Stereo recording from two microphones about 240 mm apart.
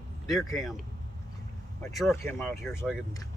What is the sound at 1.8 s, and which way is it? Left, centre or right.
Speech, centre.